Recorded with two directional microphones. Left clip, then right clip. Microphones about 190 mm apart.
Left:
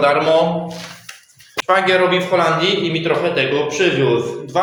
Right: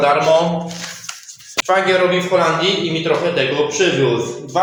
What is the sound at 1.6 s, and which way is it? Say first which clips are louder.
A man's voice: even; centre (ahead or behind).